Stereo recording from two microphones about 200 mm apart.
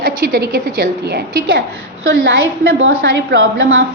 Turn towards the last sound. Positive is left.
turn(degrees=-75)  # may be behind; listen again after turning